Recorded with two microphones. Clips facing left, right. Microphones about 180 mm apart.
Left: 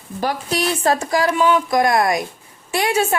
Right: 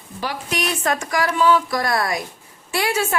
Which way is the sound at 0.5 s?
30° left (ahead or behind).